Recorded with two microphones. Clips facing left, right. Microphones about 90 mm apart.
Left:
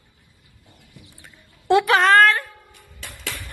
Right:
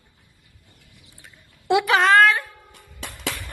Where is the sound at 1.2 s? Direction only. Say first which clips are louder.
Left 1 dB; centre (ahead or behind).